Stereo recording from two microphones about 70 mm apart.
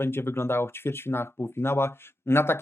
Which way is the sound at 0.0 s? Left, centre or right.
Left.